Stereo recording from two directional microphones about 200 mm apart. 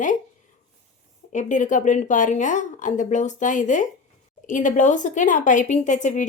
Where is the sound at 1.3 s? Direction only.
40° left (ahead or behind).